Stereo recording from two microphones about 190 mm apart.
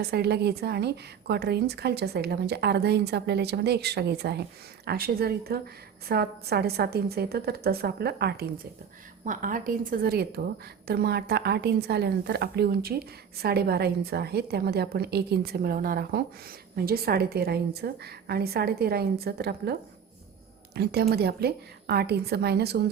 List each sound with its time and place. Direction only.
0.0 s a woman's voice: 60° right (ahead or behind)
9.2 s a woman's voice: 45° right (ahead or behind)
20.7 s a woman's voice: 55° right (ahead or behind)